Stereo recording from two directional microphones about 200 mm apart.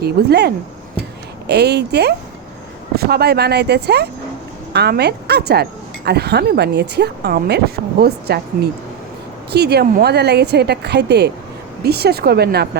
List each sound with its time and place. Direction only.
0.0 s a woman's voice: 55° right (ahead or behind)
9.5 s a woman's voice: 55° right (ahead or behind)